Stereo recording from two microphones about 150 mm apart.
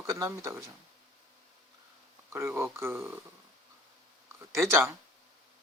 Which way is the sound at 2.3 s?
20° right (ahead or behind).